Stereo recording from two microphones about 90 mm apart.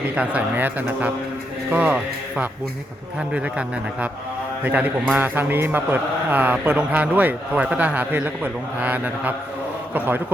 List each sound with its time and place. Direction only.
0.2 s a man's voice: 20° right (ahead or behind)